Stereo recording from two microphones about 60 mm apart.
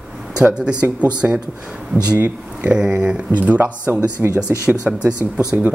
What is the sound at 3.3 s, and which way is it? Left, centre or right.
Speech, right.